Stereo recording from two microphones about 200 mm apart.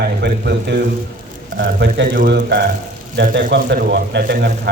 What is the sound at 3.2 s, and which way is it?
A man's voice, 65° right (ahead or behind).